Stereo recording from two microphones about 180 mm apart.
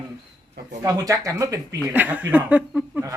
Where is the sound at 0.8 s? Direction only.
20° right (ahead or behind).